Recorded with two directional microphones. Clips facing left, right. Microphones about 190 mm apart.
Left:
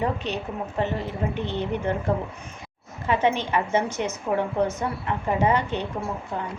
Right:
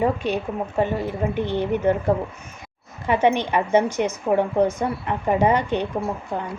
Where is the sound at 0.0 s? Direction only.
10° right (ahead or behind).